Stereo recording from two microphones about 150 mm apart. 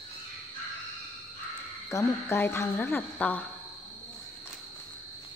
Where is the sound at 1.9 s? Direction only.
20° left (ahead or behind).